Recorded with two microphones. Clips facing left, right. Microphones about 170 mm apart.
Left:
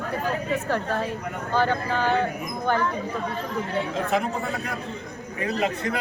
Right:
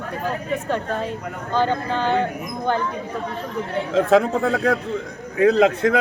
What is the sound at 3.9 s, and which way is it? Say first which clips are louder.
Speech: right 13 dB; 90° right.